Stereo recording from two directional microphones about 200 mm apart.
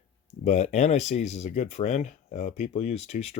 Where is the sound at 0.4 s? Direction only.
35° left (ahead or behind).